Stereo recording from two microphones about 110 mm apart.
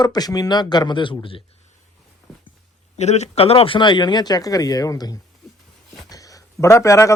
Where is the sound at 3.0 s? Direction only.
90° left.